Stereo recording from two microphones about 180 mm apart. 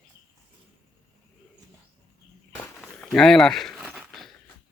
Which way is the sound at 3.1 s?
Centre (ahead or behind).